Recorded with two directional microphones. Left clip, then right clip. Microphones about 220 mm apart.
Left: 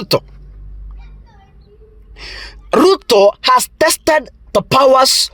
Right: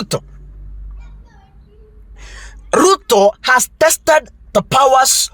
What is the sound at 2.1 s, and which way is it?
Speech, 35° left (ahead or behind).